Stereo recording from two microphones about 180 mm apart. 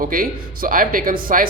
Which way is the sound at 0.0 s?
50° right (ahead or behind).